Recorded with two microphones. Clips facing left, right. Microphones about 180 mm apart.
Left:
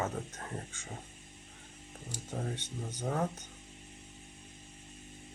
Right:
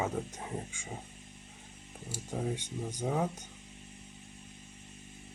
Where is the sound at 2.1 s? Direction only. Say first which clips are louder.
Right 3 dB; 10° right (ahead or behind).